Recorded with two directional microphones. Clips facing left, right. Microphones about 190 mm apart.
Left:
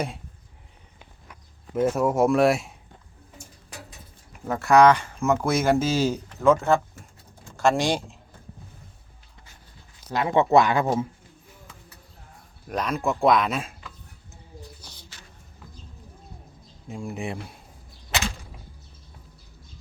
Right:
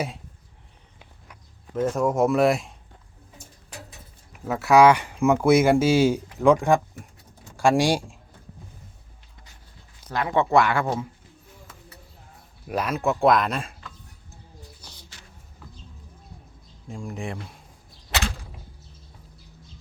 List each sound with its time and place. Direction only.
1.7 s speech: 10° left (ahead or behind)
4.3 s speech: 5° right (ahead or behind)
10.1 s speech: 20° left (ahead or behind)
12.6 s speech: 5° right (ahead or behind)
16.9 s speech: 5° left (ahead or behind)